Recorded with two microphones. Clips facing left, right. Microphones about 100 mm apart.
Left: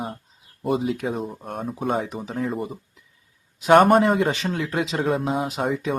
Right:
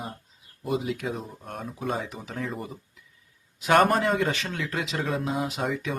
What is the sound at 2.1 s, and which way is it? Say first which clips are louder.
Speech: left 6 dB; 35° left (ahead or behind).